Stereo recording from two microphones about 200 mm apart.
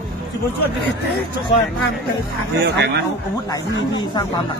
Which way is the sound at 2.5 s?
55° right (ahead or behind).